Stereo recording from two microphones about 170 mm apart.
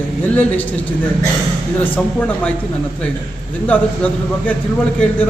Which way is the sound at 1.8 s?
10° left (ahead or behind).